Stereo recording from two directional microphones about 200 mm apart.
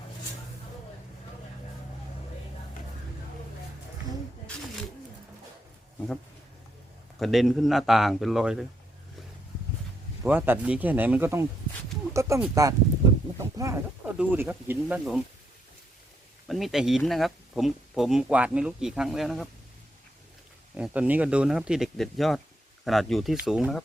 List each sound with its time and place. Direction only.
7.2 s speech: centre (ahead or behind)
10.2 s speech: 10° right (ahead or behind)
16.5 s speech: centre (ahead or behind)
20.7 s speech: 5° right (ahead or behind)